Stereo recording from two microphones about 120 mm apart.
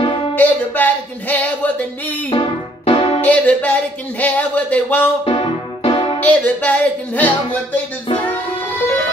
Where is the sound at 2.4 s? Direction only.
55° left (ahead or behind).